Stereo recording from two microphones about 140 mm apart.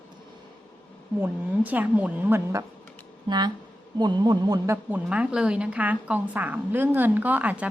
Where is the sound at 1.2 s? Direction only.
10° right (ahead or behind).